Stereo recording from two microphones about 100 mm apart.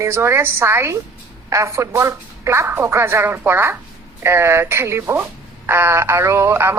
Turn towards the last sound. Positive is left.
turn(degrees=-25)  # may be behind; listen again after turning